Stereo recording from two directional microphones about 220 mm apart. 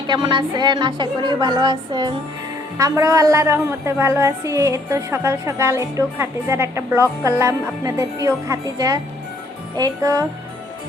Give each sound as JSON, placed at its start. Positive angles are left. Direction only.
{"t": 0.1, "sound": "a woman's voice", "side_deg": -20}